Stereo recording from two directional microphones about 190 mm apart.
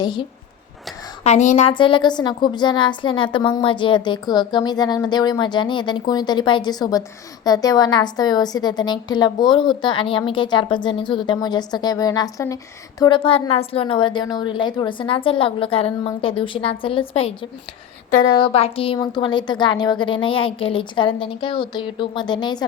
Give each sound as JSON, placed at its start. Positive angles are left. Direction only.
{"t": 0.0, "sound": "a woman's voice", "side_deg": 25}
{"t": 1.2, "sound": "a woman's voice", "side_deg": 40}
{"t": 18.3, "sound": "a woman's voice", "side_deg": 30}